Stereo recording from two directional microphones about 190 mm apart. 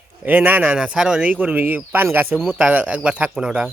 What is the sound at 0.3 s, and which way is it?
Speech, 10° right (ahead or behind).